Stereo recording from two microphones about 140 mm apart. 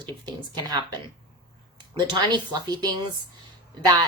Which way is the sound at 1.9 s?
35° right (ahead or behind).